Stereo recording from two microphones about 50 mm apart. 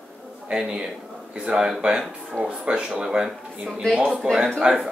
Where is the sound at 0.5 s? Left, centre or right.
Centre.